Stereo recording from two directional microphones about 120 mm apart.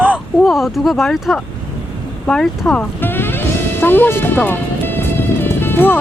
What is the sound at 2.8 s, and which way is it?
Music, 15° left (ahead or behind).